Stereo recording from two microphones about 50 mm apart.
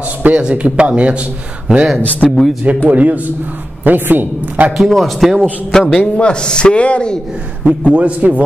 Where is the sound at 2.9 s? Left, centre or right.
Right.